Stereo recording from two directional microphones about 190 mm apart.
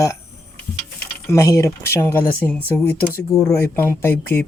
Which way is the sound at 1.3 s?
15° left (ahead or behind).